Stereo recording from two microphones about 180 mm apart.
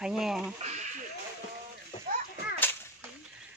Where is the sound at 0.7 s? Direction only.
40° right (ahead or behind).